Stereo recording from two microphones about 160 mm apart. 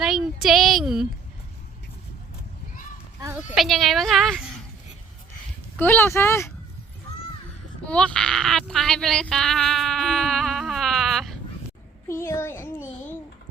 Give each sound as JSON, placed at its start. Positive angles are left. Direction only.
{"t": 0.0, "sound": "a sound", "side_deg": 0}
{"t": 0.4, "sound": "speech", "side_deg": 0}
{"t": 3.5, "sound": "speech", "side_deg": 0}
{"t": 5.8, "sound": "a child's voice", "side_deg": 15}
{"t": 7.9, "sound": "speech", "side_deg": 5}
{"t": 12.0, "sound": "a child's voice", "side_deg": 15}